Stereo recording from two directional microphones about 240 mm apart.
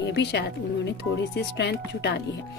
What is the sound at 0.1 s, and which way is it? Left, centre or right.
A woman's voice, left.